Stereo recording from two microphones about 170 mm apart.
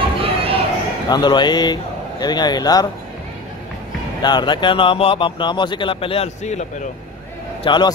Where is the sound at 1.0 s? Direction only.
25° left (ahead or behind).